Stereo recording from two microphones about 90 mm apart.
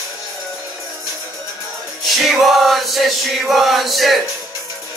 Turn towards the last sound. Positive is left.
turn(degrees=0)  # may be behind; listen again after turning